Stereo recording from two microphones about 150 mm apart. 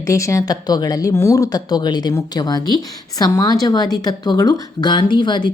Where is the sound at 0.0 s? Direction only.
20° left (ahead or behind).